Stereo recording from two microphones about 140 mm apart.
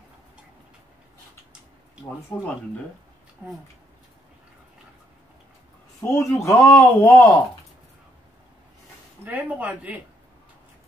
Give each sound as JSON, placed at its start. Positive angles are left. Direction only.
{"t": 2.3, "sound": "speech", "side_deg": 5}
{"t": 3.4, "sound": "speech", "side_deg": -10}
{"t": 6.0, "sound": "speech", "side_deg": 20}
{"t": 9.2, "sound": "speech", "side_deg": -10}